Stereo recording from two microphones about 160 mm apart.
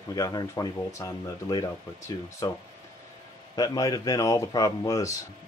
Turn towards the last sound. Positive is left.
turn(degrees=20)  # may be behind; listen again after turning